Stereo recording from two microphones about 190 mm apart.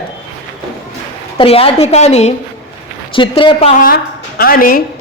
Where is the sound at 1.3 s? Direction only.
30° left (ahead or behind).